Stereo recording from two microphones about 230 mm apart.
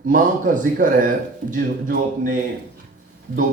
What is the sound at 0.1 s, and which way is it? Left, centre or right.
Speech, right.